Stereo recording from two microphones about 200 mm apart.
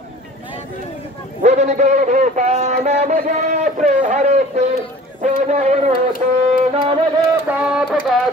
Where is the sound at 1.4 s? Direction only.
35° right (ahead or behind).